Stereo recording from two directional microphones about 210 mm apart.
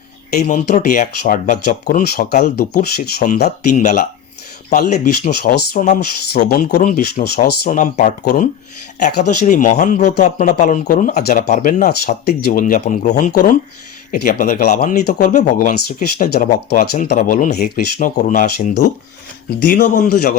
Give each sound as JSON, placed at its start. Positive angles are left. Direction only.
{"t": 0.3, "sound": "speech", "side_deg": 40}
{"t": 3.8, "sound": "speech", "side_deg": 35}
{"t": 6.3, "sound": "speech", "side_deg": 50}
{"t": 11.9, "sound": "speech", "side_deg": 50}
{"t": 17.2, "sound": "speech", "side_deg": 40}